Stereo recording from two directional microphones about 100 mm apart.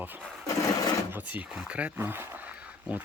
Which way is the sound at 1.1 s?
15° right (ahead or behind).